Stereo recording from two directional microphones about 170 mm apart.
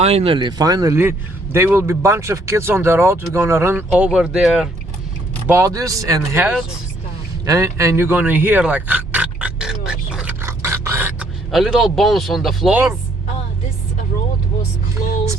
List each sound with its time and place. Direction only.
0.0 s speech: 35° right (ahead or behind); by 4.7 s centre (ahead or behind)
5.5 s speech: 20° right (ahead or behind)
7.4 s grunt: 20° right (ahead or behind)
11.5 s a man's voice: centre (ahead or behind)